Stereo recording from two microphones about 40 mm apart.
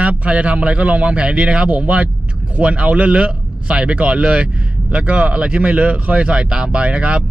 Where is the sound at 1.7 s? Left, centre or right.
Right.